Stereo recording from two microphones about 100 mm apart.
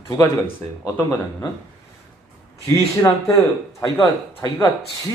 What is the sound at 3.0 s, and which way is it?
Speech, 35° left (ahead or behind).